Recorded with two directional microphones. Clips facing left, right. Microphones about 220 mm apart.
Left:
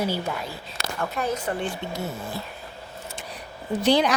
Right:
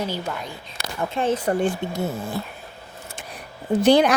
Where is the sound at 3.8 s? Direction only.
50° right (ahead or behind).